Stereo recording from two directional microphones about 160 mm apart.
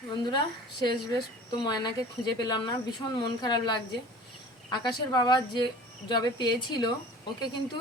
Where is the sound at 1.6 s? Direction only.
25° left (ahead or behind).